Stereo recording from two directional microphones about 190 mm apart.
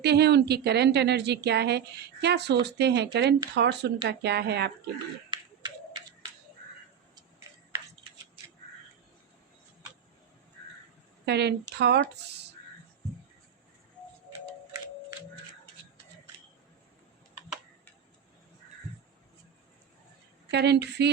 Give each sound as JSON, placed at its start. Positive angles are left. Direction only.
{"t": 0.0, "sound": "a woman's voice", "side_deg": -60}
{"t": 5.3, "sound": "a sound", "side_deg": -25}
{"t": 11.3, "sound": "a woman's voice", "side_deg": -60}
{"t": 14.7, "sound": "music", "side_deg": -15}
{"t": 20.5, "sound": "a woman's voice", "side_deg": -60}